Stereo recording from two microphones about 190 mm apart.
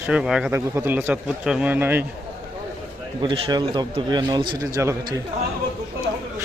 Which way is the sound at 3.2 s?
25° right (ahead or behind).